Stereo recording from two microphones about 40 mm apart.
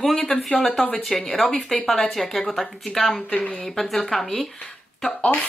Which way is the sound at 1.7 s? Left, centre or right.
Centre.